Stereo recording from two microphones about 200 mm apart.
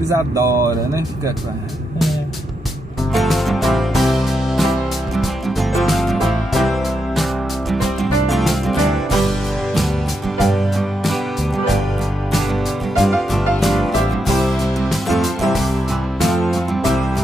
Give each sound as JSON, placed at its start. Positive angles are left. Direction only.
{"t": 0.1, "sound": "speech", "side_deg": -15}
{"t": 3.1, "sound": "music", "side_deg": 0}
{"t": 10.4, "sound": "music", "side_deg": 0}
{"t": 12.9, "sound": "music", "side_deg": 0}